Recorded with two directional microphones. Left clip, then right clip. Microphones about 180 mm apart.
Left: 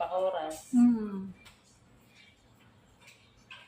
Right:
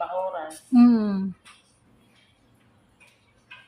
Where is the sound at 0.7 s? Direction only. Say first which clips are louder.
Right 8 dB; 75° right (ahead or behind).